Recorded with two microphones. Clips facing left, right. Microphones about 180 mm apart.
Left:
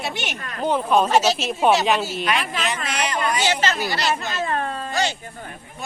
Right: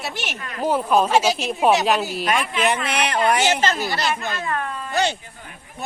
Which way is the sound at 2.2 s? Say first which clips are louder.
Right 3 dB; 50° right (ahead or behind).